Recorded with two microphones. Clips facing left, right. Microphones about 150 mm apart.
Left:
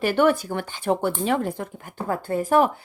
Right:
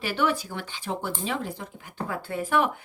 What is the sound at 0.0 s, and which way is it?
Speech, 50° left (ahead or behind).